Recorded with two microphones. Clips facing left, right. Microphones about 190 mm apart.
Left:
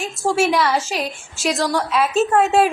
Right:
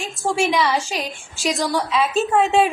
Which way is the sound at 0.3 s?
Centre (ahead or behind).